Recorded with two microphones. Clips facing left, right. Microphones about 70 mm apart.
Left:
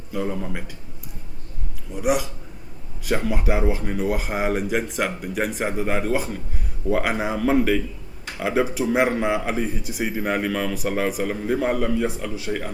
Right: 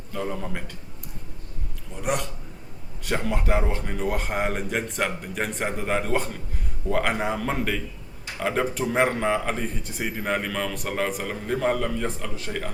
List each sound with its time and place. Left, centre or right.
0.1 s speech: centre
1.9 s speech: centre